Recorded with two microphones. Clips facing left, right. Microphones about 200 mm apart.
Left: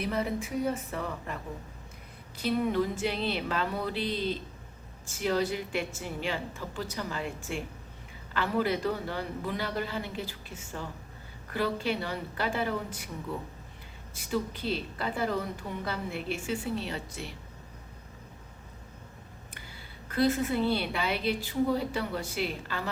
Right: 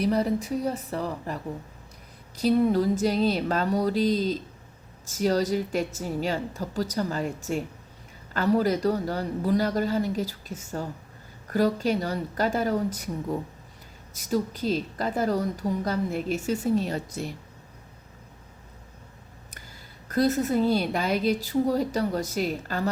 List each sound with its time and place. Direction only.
0.0 s a woman's voice: 35° right (ahead or behind)
19.5 s speech: 40° right (ahead or behind)